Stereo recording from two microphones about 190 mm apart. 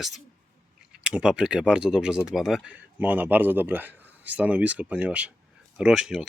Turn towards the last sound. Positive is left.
turn(degrees=-5)  # may be behind; listen again after turning